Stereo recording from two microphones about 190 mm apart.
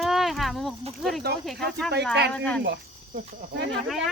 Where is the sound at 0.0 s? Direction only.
Centre (ahead or behind).